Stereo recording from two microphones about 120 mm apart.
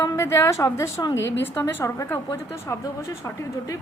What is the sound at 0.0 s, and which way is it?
A woman's voice, 25° left (ahead or behind).